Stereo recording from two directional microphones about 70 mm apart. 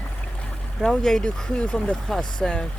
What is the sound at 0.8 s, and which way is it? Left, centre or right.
Speech, centre.